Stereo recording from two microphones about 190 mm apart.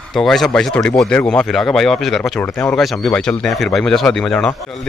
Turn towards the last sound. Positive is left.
turn(degrees=5)  # may be behind; listen again after turning